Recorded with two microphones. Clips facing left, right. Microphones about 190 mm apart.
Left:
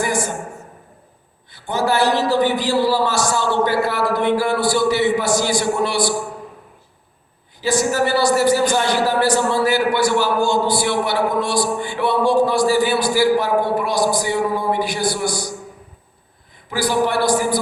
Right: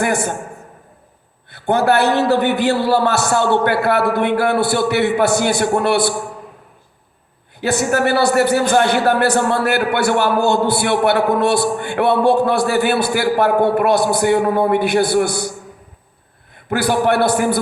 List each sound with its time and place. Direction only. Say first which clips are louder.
0.0 s a man's voice: right 3 dB; 60° right (ahead or behind)
1.5 s a man's voice: right 5 dB; 60° right (ahead or behind)
7.6 s a man's voice: right 1 dB; 60° right (ahead or behind)
16.6 s a man's voice: right 3 dB; 60° right (ahead or behind)